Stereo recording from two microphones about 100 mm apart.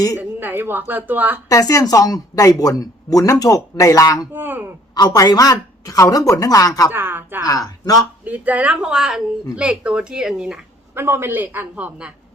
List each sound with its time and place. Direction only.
0.2 s a woman's voice: 20° right (ahead or behind)
1.5 s speech: 35° left (ahead or behind)
4.4 s a woman's voice: 20° right (ahead or behind)
4.9 s speech: 40° left (ahead or behind)
6.9 s a woman's voice: 20° right (ahead or behind)
7.4 s speech: 40° left (ahead or behind)
8.2 s speech: 15° right (ahead or behind)
10.9 s a woman's voice: 25° right (ahead or behind)